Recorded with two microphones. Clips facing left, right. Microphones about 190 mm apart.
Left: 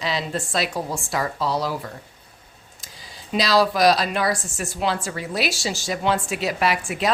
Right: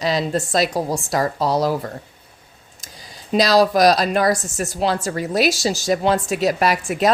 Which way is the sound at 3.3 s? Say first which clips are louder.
Right 4 dB; 40° right (ahead or behind).